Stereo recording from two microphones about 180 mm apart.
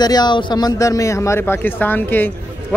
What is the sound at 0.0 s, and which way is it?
A man's voice, 25° left (ahead or behind).